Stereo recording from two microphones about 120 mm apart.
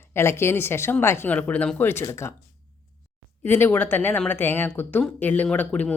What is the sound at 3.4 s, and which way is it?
Speech, 20° left (ahead or behind).